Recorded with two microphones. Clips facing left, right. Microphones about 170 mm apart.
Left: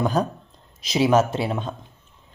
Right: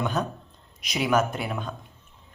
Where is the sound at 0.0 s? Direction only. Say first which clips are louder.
Left 5 dB; 35° left (ahead or behind).